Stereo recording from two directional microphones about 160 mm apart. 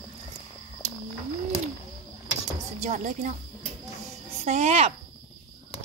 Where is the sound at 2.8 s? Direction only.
50° right (ahead or behind).